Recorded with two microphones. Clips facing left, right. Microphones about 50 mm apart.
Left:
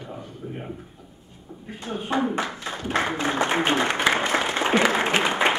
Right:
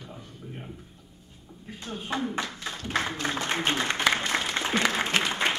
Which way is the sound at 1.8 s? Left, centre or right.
Left.